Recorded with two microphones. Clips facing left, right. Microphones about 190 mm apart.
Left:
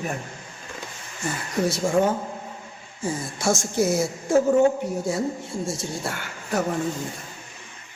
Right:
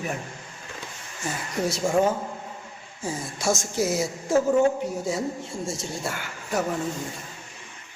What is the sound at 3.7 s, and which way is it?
Speech, 55° left (ahead or behind).